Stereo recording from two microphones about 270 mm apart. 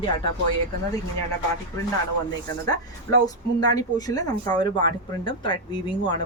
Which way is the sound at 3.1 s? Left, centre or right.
Centre.